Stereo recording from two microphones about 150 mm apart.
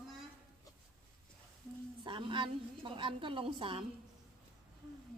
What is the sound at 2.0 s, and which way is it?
A woman's voice, 35° right (ahead or behind).